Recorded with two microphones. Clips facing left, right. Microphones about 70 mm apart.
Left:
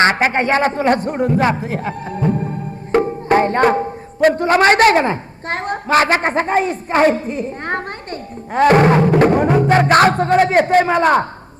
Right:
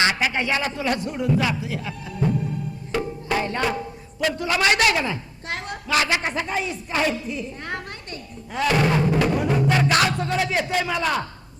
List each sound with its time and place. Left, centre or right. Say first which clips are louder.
0.0 s speech: left 8 dB; left